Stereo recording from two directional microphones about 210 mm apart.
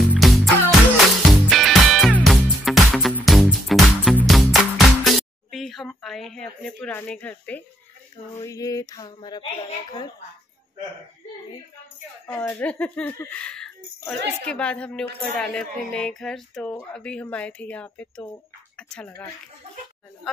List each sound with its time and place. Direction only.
0.0 s music: centre (ahead or behind)
8.4 s speech: 15° left (ahead or behind)
12.3 s speech: 10° left (ahead or behind)